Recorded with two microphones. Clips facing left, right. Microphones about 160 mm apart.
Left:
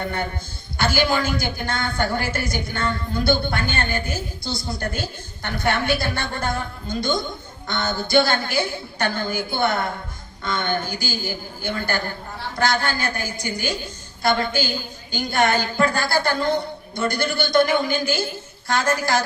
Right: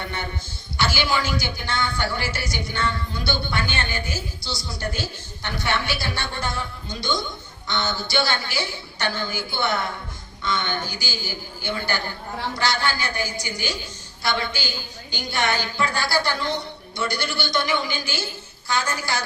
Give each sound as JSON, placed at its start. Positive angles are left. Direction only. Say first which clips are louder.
{"t": 0.8, "sound": "a woman's voice", "louder": "left 3 dB", "side_deg": 50}